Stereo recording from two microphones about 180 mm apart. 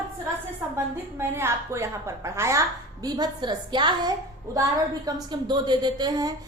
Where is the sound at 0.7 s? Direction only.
15° right (ahead or behind).